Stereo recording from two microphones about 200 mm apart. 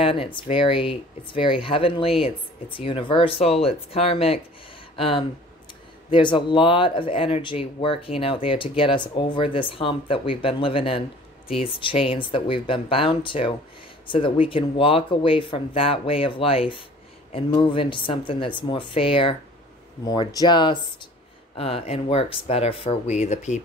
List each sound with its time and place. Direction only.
0.0 s speech: 25° left (ahead or behind)